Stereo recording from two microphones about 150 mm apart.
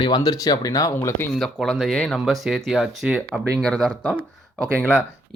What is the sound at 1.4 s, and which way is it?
Speech, centre (ahead or behind).